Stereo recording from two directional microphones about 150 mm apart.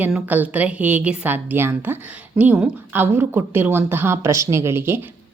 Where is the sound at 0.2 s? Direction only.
10° right (ahead or behind).